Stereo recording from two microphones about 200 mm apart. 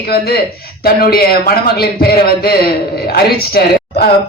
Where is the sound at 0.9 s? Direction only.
50° left (ahead or behind).